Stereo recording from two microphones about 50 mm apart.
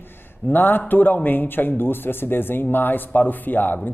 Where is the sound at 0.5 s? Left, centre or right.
Left.